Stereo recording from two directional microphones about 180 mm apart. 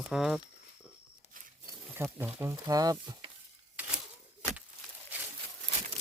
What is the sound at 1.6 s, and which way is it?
Speech, 15° right (ahead or behind).